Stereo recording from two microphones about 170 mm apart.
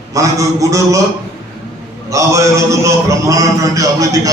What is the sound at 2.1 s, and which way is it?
A man's voice, 15° right (ahead or behind).